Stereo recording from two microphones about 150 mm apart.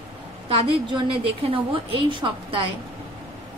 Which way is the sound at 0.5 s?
35° right (ahead or behind).